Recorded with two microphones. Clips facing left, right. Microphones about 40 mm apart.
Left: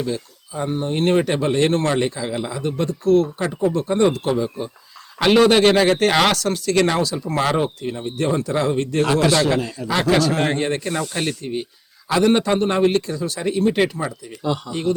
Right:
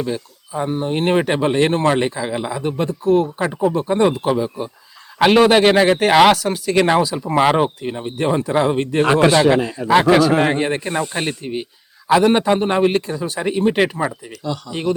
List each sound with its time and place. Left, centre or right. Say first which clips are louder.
0.0 s speech: right 1 dB; right